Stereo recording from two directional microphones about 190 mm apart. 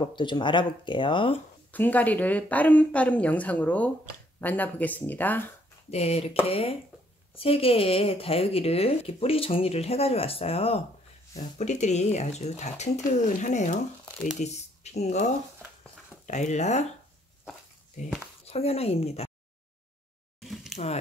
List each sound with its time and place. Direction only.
0.0 s speech: 25° left (ahead or behind)
1.7 s a woman's voice: 10° left (ahead or behind)
5.9 s speech: 35° left (ahead or behind)
16.3 s speech: 40° left (ahead or behind)
18.5 s speech: 30° left (ahead or behind)
20.3 s a sound: centre (ahead or behind)
20.7 s speech: 35° left (ahead or behind)